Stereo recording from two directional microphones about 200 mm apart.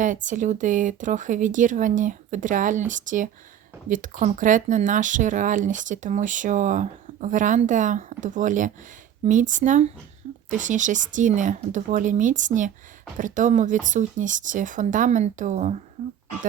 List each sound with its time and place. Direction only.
0.0 s speech: 40° right (ahead or behind)